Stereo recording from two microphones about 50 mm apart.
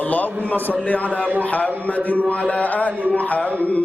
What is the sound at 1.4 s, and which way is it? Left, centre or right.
Mantra, left.